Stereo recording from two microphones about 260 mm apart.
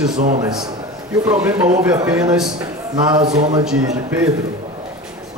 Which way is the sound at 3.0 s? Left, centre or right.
Centre.